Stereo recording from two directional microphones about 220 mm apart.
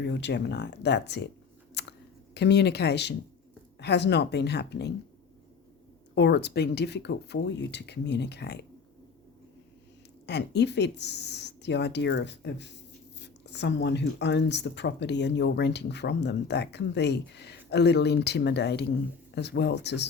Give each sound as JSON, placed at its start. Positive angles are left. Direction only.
{"t": 0.0, "sound": "speech", "side_deg": 50}
{"t": 1.7, "sound": "camera", "side_deg": 50}
{"t": 3.8, "sound": "speech", "side_deg": 50}
{"t": 6.1, "sound": "speech", "side_deg": 50}
{"t": 10.2, "sound": "speech", "side_deg": 50}